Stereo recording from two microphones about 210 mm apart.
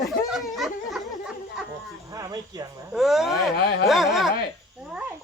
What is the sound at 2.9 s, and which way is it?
Speech, centre (ahead or behind).